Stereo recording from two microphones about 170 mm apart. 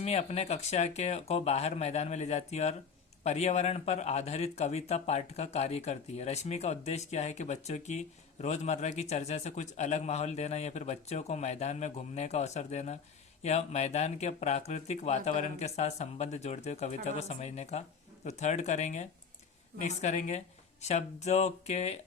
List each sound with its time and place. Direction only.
0.0 s speech: 40° left (ahead or behind)